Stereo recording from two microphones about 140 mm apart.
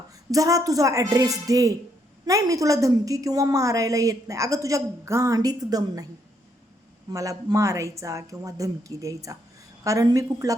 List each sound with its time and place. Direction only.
0.3 s a woman's voice: 25° right (ahead or behind)
7.1 s a woman's voice: 25° right (ahead or behind)